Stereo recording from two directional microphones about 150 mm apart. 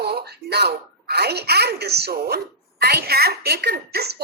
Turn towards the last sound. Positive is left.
turn(degrees=-90)